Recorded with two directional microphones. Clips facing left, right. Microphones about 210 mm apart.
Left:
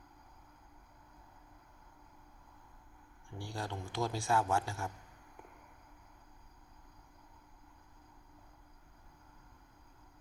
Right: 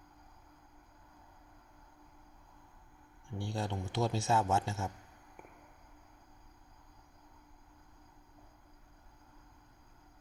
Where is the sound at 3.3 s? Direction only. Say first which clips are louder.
Right 4 dB; 20° right (ahead or behind).